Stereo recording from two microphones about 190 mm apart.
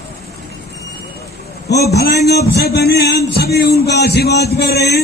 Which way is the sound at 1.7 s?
60° left (ahead or behind).